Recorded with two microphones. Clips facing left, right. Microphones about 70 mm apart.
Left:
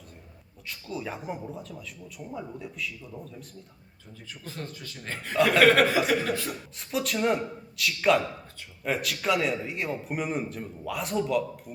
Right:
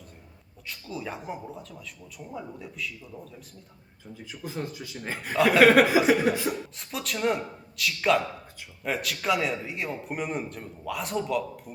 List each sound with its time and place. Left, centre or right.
0.7 s a man's voice: centre
6.7 s a man's voice: centre